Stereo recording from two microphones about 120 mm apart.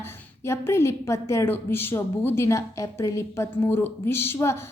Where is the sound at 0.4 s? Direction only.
20° left (ahead or behind).